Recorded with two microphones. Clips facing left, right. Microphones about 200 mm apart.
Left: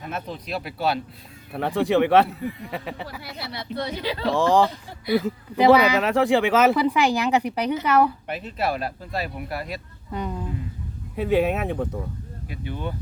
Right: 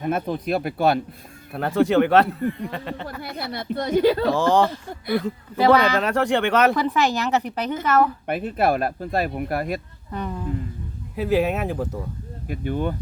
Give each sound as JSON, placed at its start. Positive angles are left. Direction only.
{"t": 0.0, "sound": "speech", "side_deg": -50}
{"t": 1.5, "sound": "speech", "side_deg": 0}
{"t": 3.5, "sound": "speech", "side_deg": -50}
{"t": 4.3, "sound": "speech", "side_deg": 0}
{"t": 8.3, "sound": "speech", "side_deg": -55}
{"t": 10.1, "sound": "speech", "side_deg": 10}
{"t": 11.1, "sound": "speech", "side_deg": 0}
{"t": 12.5, "sound": "speech", "side_deg": -50}